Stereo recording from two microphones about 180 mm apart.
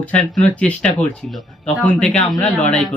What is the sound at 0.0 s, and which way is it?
Speech, 5° left (ahead or behind).